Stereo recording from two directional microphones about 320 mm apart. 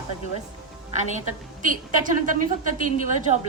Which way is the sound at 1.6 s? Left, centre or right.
Right.